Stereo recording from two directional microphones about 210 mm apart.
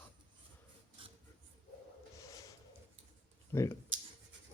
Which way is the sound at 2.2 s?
15° left (ahead or behind).